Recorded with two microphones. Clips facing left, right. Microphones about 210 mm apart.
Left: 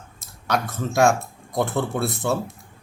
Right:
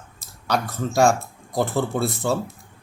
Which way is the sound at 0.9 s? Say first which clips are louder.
Even; centre (ahead or behind).